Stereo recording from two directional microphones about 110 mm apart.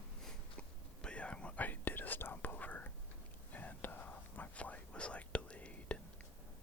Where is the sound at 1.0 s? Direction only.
10° left (ahead or behind).